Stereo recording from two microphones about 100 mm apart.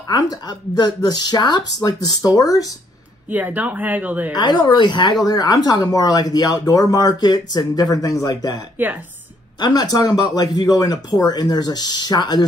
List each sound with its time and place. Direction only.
0.1 s speech: 45° left (ahead or behind)
3.3 s speech: 15° right (ahead or behind)
4.3 s speech: 45° left (ahead or behind)